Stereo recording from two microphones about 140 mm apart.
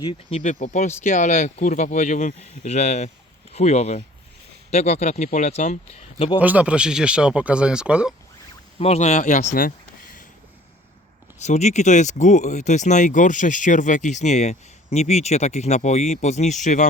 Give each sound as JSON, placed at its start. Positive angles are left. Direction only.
{"t": 0.0, "sound": "speech", "side_deg": 45}
{"t": 6.4, "sound": "speech", "side_deg": -10}
{"t": 8.8, "sound": "speech", "side_deg": 50}
{"t": 11.3, "sound": "speech", "side_deg": 55}